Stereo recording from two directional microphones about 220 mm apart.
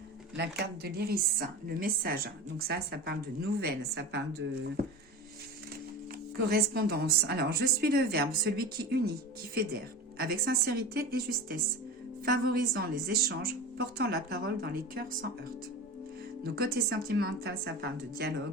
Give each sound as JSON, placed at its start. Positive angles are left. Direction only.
{"t": 0.3, "sound": "a woman's voice", "side_deg": -45}
{"t": 6.3, "sound": "a woman's voice", "side_deg": -45}
{"t": 10.2, "sound": "a woman's voice", "side_deg": -45}
{"t": 16.4, "sound": "a woman's voice", "side_deg": -45}